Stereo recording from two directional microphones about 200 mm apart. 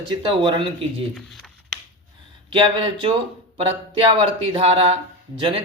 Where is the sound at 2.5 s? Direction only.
25° right (ahead or behind).